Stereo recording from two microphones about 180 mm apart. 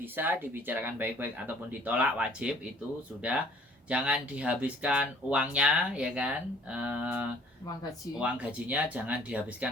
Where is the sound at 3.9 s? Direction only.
5° right (ahead or behind).